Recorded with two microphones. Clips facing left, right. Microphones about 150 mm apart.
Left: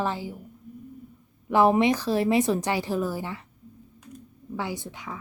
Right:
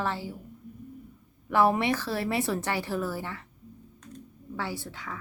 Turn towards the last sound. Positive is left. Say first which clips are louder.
# left 2 dB
turn(degrees=15)  # may be behind; listen again after turning